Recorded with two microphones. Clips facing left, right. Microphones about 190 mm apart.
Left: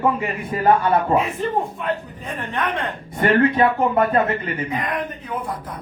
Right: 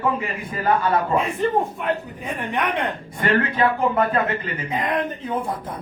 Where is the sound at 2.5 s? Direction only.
15° right (ahead or behind).